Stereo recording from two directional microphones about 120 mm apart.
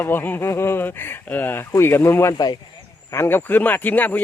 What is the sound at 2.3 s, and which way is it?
Speech, 35° left (ahead or behind).